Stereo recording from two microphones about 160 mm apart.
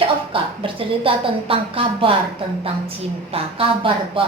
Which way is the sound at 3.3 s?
35° right (ahead or behind).